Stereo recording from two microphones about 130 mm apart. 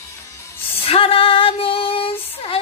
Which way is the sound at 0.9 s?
45° left (ahead or behind).